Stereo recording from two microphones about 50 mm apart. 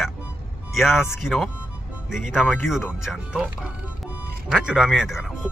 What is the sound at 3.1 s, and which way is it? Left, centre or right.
Speech, centre.